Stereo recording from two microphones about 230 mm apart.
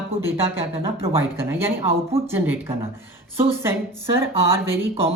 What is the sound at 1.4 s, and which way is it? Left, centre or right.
Speech, centre.